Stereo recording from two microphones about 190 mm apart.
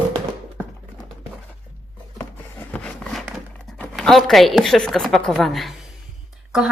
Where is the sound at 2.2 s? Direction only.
10° left (ahead or behind).